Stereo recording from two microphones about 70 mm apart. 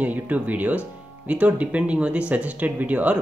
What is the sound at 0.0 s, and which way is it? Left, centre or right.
Speech, right.